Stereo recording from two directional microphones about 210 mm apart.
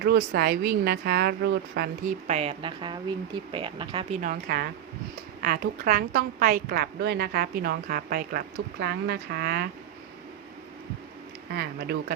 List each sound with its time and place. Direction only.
0.0 s a woman's voice: 50° right (ahead or behind)
2.2 s speech: 30° right (ahead or behind)
4.2 s a woman's voice: 45° right (ahead or behind)
11.5 s a woman's voice: 50° right (ahead or behind)